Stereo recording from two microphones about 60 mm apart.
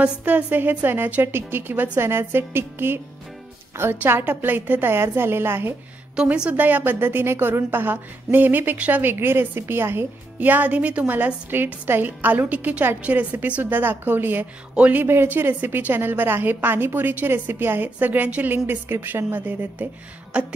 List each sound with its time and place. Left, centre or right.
0.0 s a woman's voice: right
4.0 s a woman's voice: right
6.5 s a woman's voice: right
9.0 s a woman's voice: right
10.4 s a woman's voice: right
15.0 s a woman's voice: right
20.3 s a woman's voice: right